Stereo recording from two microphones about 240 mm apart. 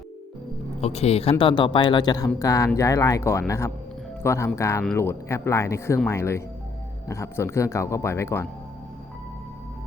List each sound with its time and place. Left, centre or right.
0.8 s speech: left